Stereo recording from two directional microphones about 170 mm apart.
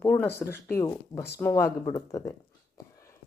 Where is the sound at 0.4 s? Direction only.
15° left (ahead or behind).